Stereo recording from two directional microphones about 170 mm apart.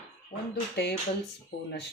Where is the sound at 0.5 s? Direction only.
80° left.